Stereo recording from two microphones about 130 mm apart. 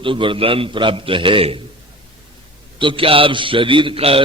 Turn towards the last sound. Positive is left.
turn(degrees=-45)  # may be behind; listen again after turning